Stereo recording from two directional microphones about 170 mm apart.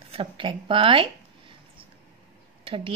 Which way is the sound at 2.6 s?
30° right (ahead or behind).